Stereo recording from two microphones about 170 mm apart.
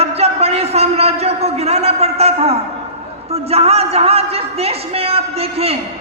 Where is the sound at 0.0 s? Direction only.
40° right (ahead or behind).